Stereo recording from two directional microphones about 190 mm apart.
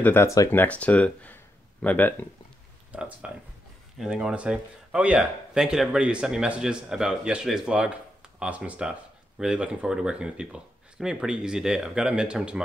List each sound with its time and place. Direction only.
0.0 s speech: 10° left (ahead or behind)
2.9 s speech: 5° right (ahead or behind)